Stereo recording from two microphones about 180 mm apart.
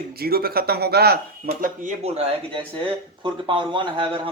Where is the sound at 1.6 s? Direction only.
40° right (ahead or behind).